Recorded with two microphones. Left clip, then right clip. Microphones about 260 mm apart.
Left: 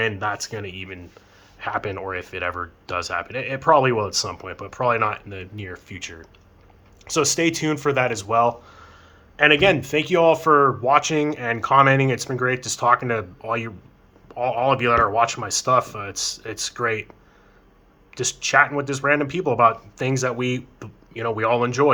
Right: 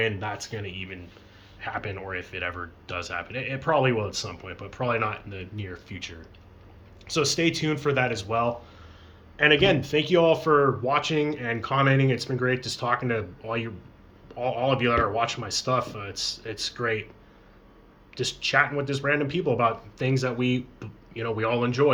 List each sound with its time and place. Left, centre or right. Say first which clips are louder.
0.0 s speech: left 4 dB; centre
18.1 s speech: left 5 dB; centre